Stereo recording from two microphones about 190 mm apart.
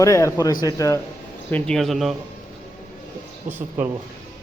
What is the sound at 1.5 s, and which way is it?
Speech, 5° left (ahead or behind).